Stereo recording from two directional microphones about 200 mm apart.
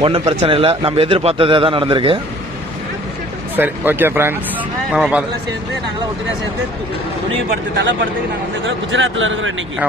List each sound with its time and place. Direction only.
0.0 s a man's voice: 25° right (ahead or behind)
3.5 s a man's voice: 10° right (ahead or behind)
8.6 s a man's voice: 70° right (ahead or behind)